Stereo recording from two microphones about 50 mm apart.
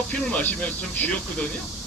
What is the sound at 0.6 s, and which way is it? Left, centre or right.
Speech, left.